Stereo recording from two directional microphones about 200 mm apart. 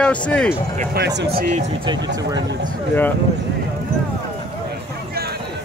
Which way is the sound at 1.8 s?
20° right (ahead or behind).